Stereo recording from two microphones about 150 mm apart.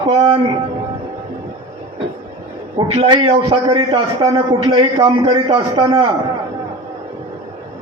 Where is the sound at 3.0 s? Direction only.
30° right (ahead or behind).